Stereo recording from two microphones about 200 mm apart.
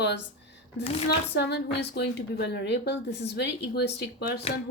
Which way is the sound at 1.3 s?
60° left (ahead or behind).